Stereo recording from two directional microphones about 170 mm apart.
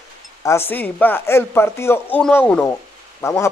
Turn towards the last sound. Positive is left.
turn(degrees=15)  # may be behind; listen again after turning